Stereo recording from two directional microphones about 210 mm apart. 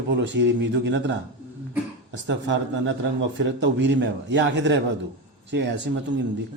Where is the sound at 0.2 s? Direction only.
60° right (ahead or behind).